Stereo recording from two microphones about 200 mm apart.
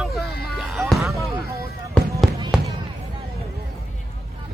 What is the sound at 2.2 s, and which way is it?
Fireworks, centre (ahead or behind).